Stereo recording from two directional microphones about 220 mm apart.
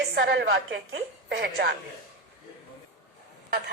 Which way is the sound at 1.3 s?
50° right (ahead or behind).